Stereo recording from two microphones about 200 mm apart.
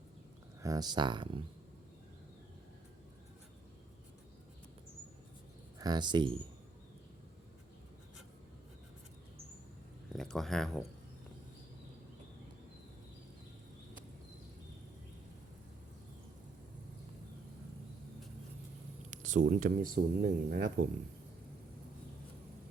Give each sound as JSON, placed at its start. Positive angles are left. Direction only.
{"t": 0.6, "sound": "speech", "side_deg": -20}
{"t": 5.8, "sound": "speech", "side_deg": -20}
{"t": 10.1, "sound": "speech", "side_deg": 0}
{"t": 19.1, "sound": "speech", "side_deg": -40}